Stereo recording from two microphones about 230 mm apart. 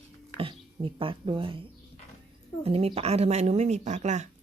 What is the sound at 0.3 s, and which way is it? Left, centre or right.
Speech, right.